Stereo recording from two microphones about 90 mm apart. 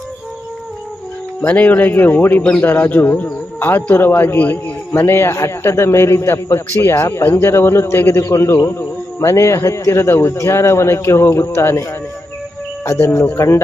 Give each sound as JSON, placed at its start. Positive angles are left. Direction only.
{"t": 1.4, "sound": "a man's voice", "side_deg": 20}